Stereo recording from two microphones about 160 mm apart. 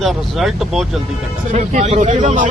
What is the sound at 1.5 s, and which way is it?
Speech, 45° right (ahead or behind).